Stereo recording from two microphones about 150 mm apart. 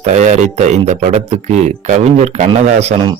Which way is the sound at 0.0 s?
50° right (ahead or behind).